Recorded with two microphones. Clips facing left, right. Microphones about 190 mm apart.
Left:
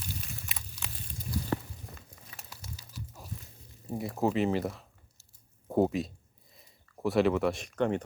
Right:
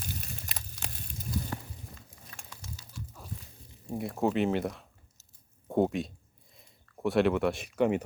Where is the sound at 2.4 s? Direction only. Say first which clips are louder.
Even; 10° left (ahead or behind).